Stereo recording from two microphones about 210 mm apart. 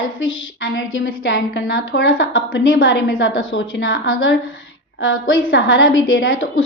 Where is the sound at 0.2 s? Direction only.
70° left (ahead or behind).